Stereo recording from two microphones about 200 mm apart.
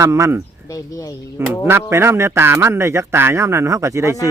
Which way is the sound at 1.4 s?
10° right (ahead or behind).